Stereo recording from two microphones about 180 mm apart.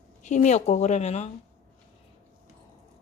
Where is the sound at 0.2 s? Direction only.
40° left (ahead or behind).